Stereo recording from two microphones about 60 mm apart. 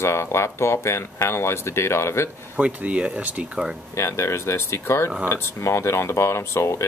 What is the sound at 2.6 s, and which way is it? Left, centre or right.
Speech, right.